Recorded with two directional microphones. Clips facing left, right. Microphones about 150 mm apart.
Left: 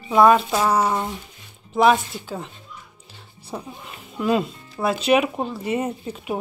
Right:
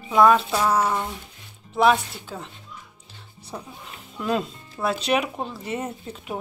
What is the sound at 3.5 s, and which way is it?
Speech, 15° left (ahead or behind).